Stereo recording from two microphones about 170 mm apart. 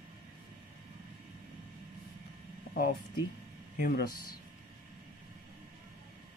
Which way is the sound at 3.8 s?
65° left (ahead or behind).